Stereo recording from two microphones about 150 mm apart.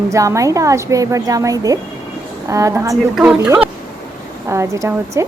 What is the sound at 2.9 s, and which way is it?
Speech, 5° right (ahead or behind).